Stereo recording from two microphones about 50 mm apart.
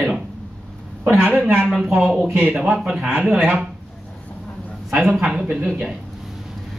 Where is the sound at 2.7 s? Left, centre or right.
Centre.